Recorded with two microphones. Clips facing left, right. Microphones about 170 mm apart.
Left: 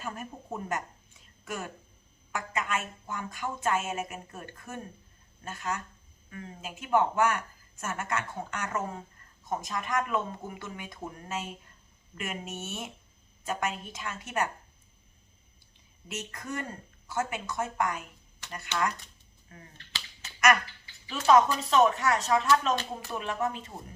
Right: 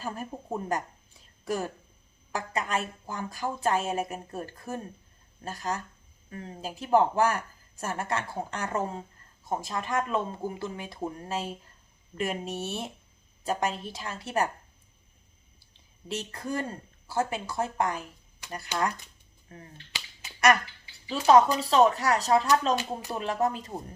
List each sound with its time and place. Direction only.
0.0 s a woman's voice: 35° right (ahead or behind)
16.0 s speech: 30° right (ahead or behind)
19.5 s speech: 30° right (ahead or behind)
21.2 s speech: 35° right (ahead or behind)
22.7 s speech: 15° right (ahead or behind)
23.1 s speech: 35° right (ahead or behind)